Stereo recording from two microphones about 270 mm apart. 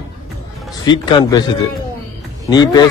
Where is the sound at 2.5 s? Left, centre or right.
Centre.